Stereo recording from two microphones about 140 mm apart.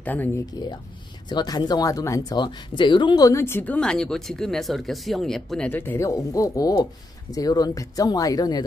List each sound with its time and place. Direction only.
0.0 s speech: 10° left (ahead or behind)
0.5 s speech: 30° left (ahead or behind)